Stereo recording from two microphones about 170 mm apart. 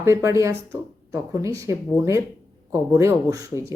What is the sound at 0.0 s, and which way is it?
Speech, 15° right (ahead or behind).